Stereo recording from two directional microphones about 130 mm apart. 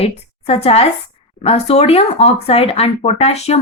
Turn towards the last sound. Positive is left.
turn(degrees=55)  # may be behind; listen again after turning